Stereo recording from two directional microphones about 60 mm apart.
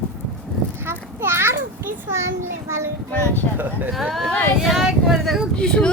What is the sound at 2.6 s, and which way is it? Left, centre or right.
Speech, right.